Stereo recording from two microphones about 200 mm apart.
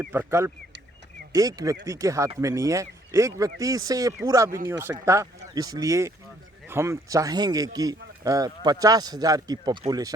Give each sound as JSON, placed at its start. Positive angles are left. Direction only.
{"t": 0.0, "sound": "speech", "side_deg": -10}